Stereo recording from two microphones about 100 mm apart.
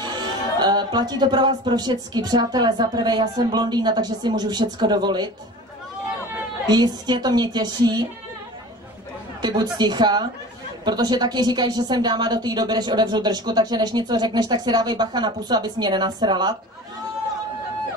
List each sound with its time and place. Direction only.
0.0 s speech: 45° right (ahead or behind)
6.7 s speech: 45° right (ahead or behind)
9.4 s speech: 45° right (ahead or behind)